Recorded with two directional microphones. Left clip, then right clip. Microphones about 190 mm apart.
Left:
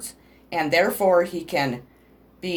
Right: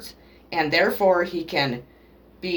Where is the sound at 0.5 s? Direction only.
50° left (ahead or behind).